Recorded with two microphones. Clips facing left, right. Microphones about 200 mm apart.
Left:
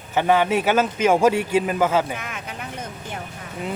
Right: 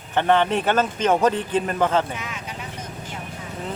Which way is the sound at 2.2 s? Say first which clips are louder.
Even; 55° left (ahead or behind).